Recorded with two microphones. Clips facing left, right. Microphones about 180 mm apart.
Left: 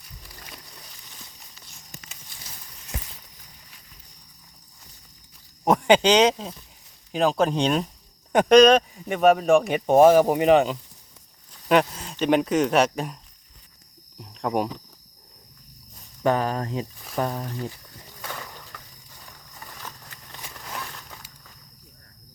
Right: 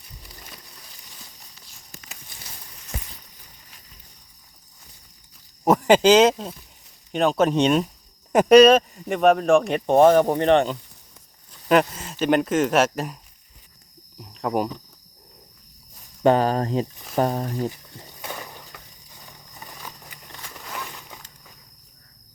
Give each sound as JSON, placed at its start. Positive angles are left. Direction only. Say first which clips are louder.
{"t": 5.6, "sound": "speech", "louder": "right 2 dB", "side_deg": -5}
{"t": 14.2, "sound": "speech", "louder": "right 1 dB", "side_deg": 0}
{"t": 16.2, "sound": "speech", "louder": "right 5 dB", "side_deg": -30}
{"t": 17.7, "sound": "a sound", "louder": "right 5 dB", "side_deg": -20}